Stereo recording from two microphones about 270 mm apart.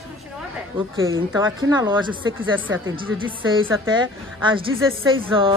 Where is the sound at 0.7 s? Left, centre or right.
Centre.